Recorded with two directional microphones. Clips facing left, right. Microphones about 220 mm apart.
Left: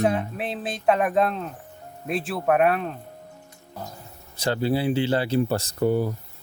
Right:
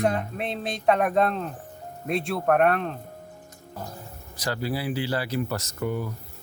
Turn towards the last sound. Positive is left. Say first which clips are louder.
# left 7 dB
turn(degrees=30)  # may be behind; listen again after turning